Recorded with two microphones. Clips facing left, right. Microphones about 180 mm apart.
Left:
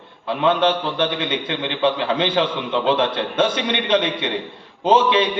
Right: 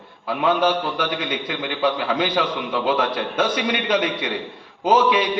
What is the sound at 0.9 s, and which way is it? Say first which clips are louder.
A man's voice: left 3 dB; 25° left (ahead or behind).